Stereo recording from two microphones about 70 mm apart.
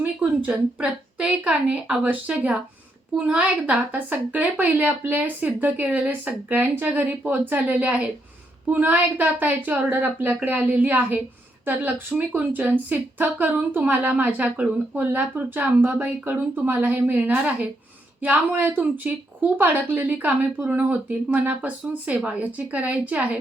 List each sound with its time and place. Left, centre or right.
0.0 s a woman's voice: centre